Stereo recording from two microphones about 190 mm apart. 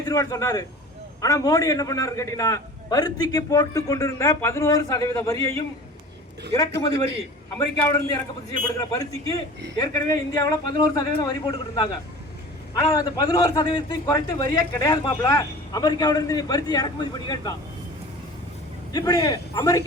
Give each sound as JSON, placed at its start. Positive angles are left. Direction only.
{"t": 0.0, "sound": "a man's voice", "side_deg": 20}
{"t": 7.8, "sound": "a man's voice", "side_deg": 15}
{"t": 18.9, "sound": "a man's voice", "side_deg": 20}